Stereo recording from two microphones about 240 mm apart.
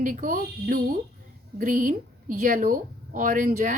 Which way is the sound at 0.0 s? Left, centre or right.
Right.